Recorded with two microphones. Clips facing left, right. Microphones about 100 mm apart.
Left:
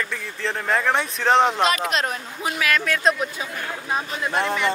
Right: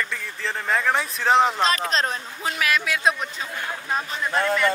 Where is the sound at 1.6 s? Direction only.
35° right (ahead or behind).